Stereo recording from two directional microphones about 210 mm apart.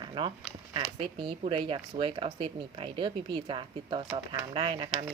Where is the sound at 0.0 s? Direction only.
25° right (ahead or behind).